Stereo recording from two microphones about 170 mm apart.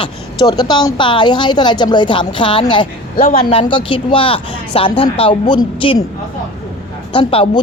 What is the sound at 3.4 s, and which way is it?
Speech, 35° left (ahead or behind).